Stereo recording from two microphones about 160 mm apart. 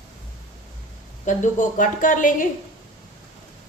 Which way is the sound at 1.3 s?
50° left (ahead or behind).